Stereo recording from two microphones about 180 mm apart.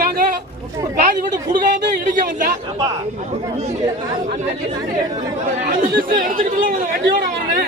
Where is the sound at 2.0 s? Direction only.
45° right (ahead or behind).